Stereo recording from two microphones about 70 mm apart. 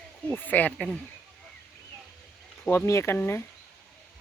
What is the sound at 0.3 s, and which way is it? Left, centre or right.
Speech, left.